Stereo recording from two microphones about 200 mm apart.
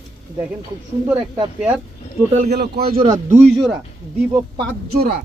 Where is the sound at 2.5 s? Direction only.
50° right (ahead or behind).